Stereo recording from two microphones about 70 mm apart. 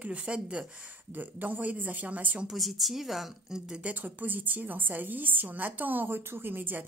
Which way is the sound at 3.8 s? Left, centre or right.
Right.